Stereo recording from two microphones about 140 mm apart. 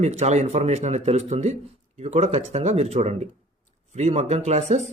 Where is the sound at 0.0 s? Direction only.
55° right (ahead or behind).